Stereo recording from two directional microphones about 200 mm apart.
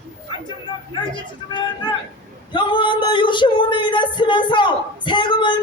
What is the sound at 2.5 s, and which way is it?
Speech, 25° left (ahead or behind).